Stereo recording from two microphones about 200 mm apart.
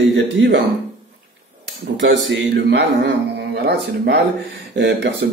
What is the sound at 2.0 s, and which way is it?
Speech, 65° right (ahead or behind).